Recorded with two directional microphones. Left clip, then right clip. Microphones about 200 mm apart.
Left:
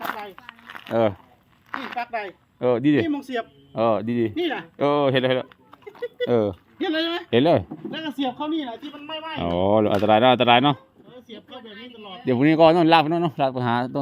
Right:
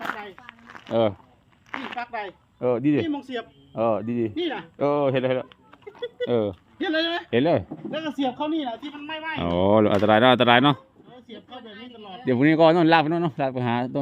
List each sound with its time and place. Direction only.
0.0 s a sound: 15° left (ahead or behind)
1.0 s speech: 10° left (ahead or behind)
1.7 s a sound: 10° left (ahead or behind)
2.0 s a sound: 50° left (ahead or behind)
2.6 s speech: 20° left (ahead or behind)
3.1 s a man's voice: 50° left (ahead or behind)
3.8 s speech: 20° left (ahead or behind)
4.4 s a man's voice: 45° left (ahead or behind)
4.8 s speech: 20° left (ahead or behind)
6.0 s a sound: 25° left (ahead or behind)
6.7 s speech: 10° left (ahead or behind)
7.3 s speech: 20° left (ahead or behind)
7.9 s speech: 5° left (ahead or behind)